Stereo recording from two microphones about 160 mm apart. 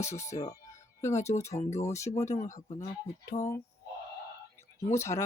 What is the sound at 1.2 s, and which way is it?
Speech, 45° left (ahead or behind).